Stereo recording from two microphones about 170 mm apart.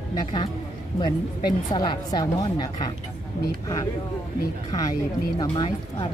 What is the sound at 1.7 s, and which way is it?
Speech, 25° left (ahead or behind).